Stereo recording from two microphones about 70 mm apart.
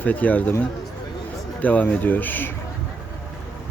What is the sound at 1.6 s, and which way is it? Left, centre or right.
Speech, left.